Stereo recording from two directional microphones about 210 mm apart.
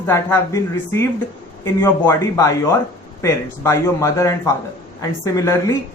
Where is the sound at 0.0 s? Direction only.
10° left (ahead or behind).